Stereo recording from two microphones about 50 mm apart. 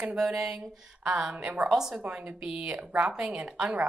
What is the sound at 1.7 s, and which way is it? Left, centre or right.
Speech, centre.